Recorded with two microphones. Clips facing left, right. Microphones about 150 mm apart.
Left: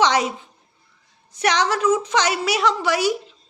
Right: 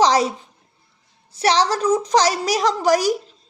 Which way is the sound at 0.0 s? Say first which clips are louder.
Right 2 dB; 35° right (ahead or behind).